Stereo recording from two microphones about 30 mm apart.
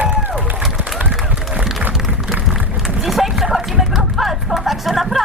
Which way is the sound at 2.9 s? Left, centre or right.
Centre.